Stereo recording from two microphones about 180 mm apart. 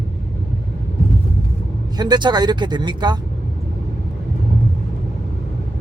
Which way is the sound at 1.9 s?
25° right (ahead or behind).